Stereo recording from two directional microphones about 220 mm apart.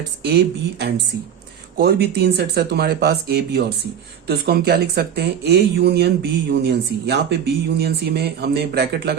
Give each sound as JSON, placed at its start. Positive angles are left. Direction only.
{"t": 0.3, "sound": "speech", "side_deg": -50}